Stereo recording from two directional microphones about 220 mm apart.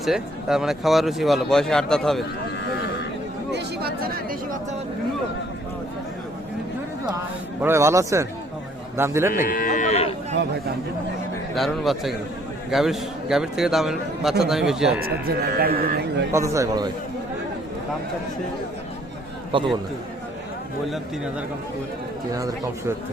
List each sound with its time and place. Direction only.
0.0 s a man's voice: centre (ahead or behind)
3.5 s speech: 45° right (ahead or behind)
7.6 s a man's voice: 10° right (ahead or behind)
9.3 s speech: 40° left (ahead or behind)
11.5 s a man's voice: centre (ahead or behind)
15.4 s speech: 45° right (ahead or behind)
16.3 s a man's voice: 15° right (ahead or behind)
19.5 s a man's voice: 25° right (ahead or behind)
22.4 s a man's voice: 15° right (ahead or behind)